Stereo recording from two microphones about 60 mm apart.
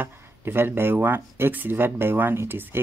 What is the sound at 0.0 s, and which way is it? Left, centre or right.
Speech, right.